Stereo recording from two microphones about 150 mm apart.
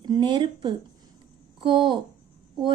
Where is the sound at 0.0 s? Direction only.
30° right (ahead or behind).